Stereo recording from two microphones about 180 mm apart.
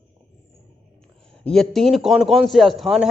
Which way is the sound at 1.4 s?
Centre (ahead or behind).